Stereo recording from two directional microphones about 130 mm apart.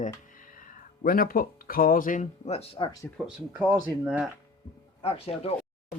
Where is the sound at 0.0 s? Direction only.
90° left; by 2.9 s 45° left (ahead or behind).